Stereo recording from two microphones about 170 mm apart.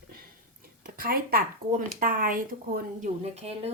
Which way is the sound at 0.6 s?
60° right (ahead or behind).